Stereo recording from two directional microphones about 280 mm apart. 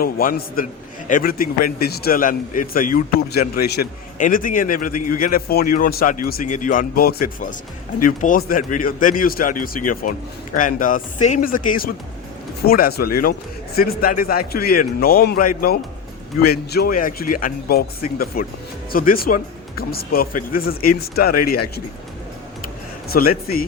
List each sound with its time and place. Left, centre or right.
0.0 s a man's voice: left
23.0 s a man's voice: left